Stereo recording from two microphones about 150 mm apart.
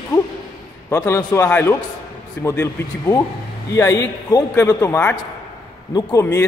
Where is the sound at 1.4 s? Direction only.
10° left (ahead or behind).